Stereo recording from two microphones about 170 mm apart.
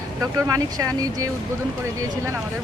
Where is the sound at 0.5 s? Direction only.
20° right (ahead or behind).